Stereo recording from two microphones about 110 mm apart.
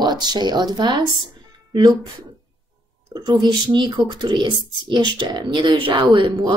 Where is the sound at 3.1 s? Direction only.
40° right (ahead or behind).